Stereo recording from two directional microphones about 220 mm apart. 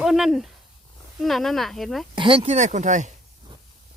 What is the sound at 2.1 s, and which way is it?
Speech, 25° right (ahead or behind).